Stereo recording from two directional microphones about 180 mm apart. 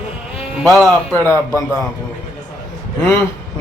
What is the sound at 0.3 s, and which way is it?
Sheep, centre (ahead or behind).